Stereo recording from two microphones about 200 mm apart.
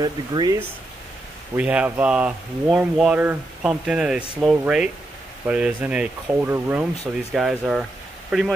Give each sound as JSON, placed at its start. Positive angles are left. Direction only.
{"t": 0.0, "sound": "speech", "side_deg": -20}
{"t": 1.6, "sound": "speech", "side_deg": -5}